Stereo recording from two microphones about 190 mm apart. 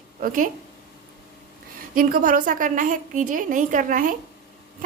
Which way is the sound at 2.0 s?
45° right (ahead or behind).